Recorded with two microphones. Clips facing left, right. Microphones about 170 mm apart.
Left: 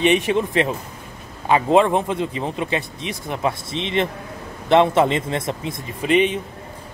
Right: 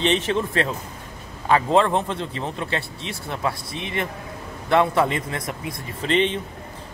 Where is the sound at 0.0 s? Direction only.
15° left (ahead or behind).